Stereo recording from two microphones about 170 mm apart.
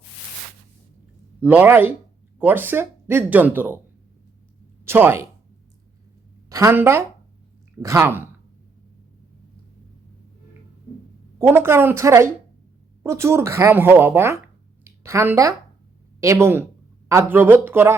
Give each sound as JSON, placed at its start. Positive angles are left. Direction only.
{"t": 1.4, "sound": "speech", "side_deg": -10}
{"t": 4.9, "sound": "speech", "side_deg": -15}
{"t": 6.5, "sound": "speech", "side_deg": -15}
{"t": 11.3, "sound": "a woman's voice", "side_deg": -15}